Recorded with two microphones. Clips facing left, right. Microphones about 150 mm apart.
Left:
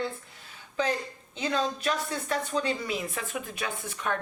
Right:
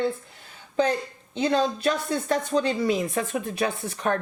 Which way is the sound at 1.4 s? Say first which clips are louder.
Right 6 dB; 35° right (ahead or behind).